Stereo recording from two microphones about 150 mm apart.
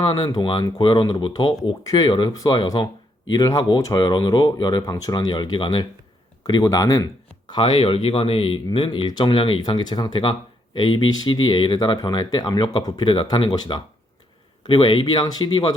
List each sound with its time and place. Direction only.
0.0 s speech: 30° left (ahead or behind)
7.5 s speech: 35° left (ahead or behind)